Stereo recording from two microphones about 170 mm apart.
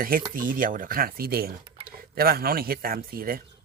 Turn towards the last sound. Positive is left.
turn(degrees=-60)  # may be behind; listen again after turning